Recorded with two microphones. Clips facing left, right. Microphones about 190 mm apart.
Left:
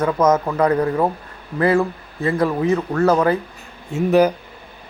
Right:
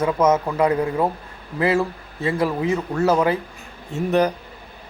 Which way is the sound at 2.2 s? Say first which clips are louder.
Left 2 dB; 25° right (ahead or behind).